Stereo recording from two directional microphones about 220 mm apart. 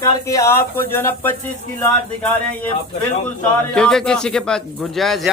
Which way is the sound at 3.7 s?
5° left (ahead or behind).